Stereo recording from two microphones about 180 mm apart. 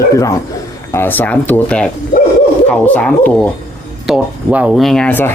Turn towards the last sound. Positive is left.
turn(degrees=10)  # may be behind; listen again after turning